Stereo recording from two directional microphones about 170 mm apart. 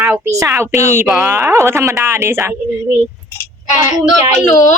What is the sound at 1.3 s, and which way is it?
Speech, 15° right (ahead or behind).